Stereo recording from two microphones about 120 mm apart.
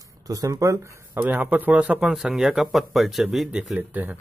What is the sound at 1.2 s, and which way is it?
Speech, 15° right (ahead or behind).